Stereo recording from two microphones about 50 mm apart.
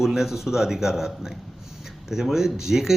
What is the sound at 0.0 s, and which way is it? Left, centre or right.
Speech, centre.